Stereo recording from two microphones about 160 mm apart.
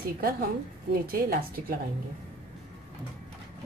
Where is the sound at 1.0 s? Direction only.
65° right (ahead or behind).